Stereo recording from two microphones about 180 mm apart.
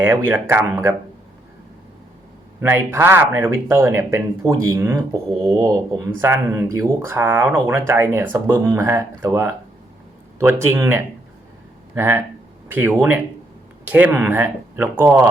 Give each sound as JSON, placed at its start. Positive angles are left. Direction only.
{"t": 0.0, "sound": "speech", "side_deg": -10}
{"t": 2.6, "sound": "speech", "side_deg": -15}
{"t": 10.6, "sound": "speech", "side_deg": -15}